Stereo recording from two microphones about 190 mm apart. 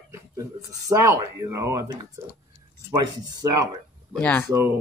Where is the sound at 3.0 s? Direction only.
20° right (ahead or behind).